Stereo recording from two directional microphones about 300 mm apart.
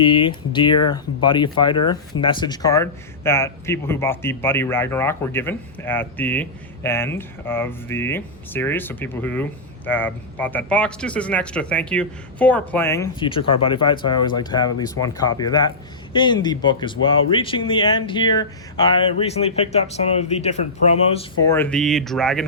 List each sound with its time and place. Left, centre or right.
0.0 s speech: centre
21.5 s speech: centre